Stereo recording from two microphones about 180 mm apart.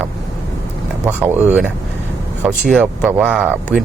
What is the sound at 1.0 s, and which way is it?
Speech, 10° right (ahead or behind).